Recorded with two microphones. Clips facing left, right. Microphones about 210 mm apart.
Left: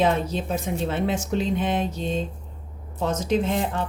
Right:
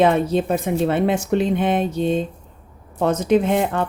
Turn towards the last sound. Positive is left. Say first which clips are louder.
# right 6 dB
turn(degrees=-60)  # may be behind; listen again after turning